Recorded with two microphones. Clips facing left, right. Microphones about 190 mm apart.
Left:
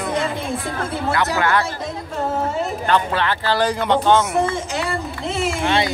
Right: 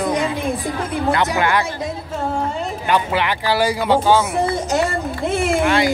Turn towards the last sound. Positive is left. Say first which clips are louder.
# right 3 dB
turn(degrees=25)  # may be behind; listen again after turning